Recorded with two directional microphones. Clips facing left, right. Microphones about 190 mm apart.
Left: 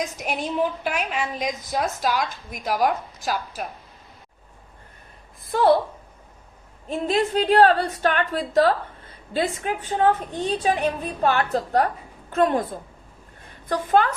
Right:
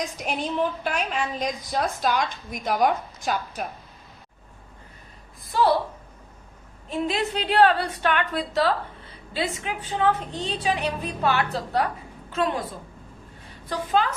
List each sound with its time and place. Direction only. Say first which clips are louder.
0.2 s a woman's voice: left 1 dB; 5° left (ahead or behind)
5.5 s a woman's voice: left 3 dB; 55° left (ahead or behind)
7.1 s a woman's voice: left 9 dB; 45° left (ahead or behind)
13.7 s a woman's voice: left 4 dB; 55° left (ahead or behind)